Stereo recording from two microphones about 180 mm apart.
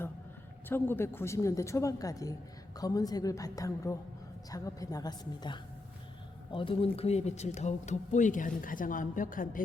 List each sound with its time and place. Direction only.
0.7 s a man's voice: 10° left (ahead or behind); by 9.6 s 50° left (ahead or behind)